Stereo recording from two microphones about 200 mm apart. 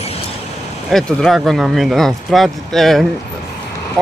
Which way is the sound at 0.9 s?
Centre (ahead or behind).